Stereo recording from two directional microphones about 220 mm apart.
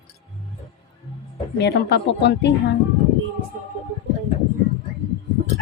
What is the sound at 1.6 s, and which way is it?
Speech, 50° left (ahead or behind).